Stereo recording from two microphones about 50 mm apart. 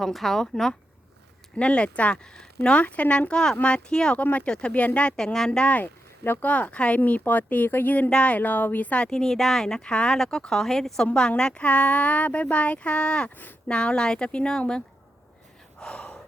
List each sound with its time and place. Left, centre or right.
0.0 s speech: centre
1.5 s speech: left
4.2 s speech: left
4.4 s speech: left
5.1 s speech: centre
5.5 s speech: left
5.8 s a sound: left
6.4 s speech: left
8.1 s speech: left
8.4 s speech: left
9.0 s speech: centre
10.5 s speech: centre
11.6 s speech: left
15.8 s gasp: centre